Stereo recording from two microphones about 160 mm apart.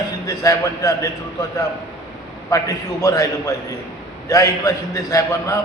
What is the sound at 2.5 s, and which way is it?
A man's voice, 20° left (ahead or behind).